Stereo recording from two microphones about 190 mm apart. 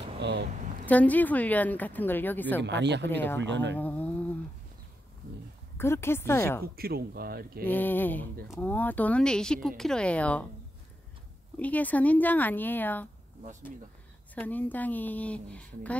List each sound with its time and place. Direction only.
0.2 s a sound: 65° right (ahead or behind)
0.8 s speech: 10° left (ahead or behind)
2.6 s speech: 65° right (ahead or behind)
3.1 s speech: 10° left (ahead or behind)
3.3 s speech: 70° right (ahead or behind)
3.7 s speech: 10° left (ahead or behind)
5.8 s speech: 15° left (ahead or behind)
6.6 s speech: 55° right (ahead or behind)
7.6 s speech: 10° left (ahead or behind)
11.5 s speech: 10° left (ahead or behind)
14.3 s speech: 10° left (ahead or behind)